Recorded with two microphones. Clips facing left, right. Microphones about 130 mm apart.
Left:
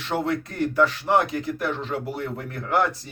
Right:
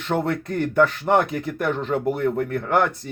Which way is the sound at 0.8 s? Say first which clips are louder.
Right 2 dB; 50° right (ahead or behind).